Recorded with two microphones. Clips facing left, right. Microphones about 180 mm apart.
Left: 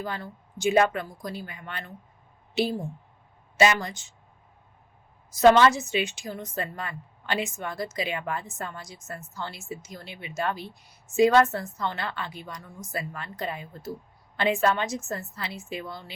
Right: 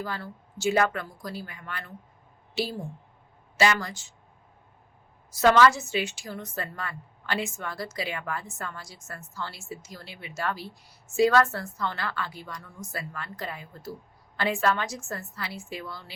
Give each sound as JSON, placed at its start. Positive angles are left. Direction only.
{"t": 0.0, "sound": "a woman's voice", "side_deg": 20}
{"t": 3.6, "sound": "a woman's voice", "side_deg": 20}
{"t": 5.3, "sound": "a woman's voice", "side_deg": 20}